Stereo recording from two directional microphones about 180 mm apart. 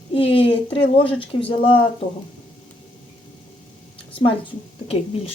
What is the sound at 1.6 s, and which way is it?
Speech, 30° left (ahead or behind).